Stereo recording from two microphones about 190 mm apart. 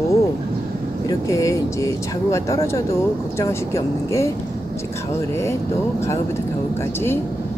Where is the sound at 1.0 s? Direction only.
15° left (ahead or behind).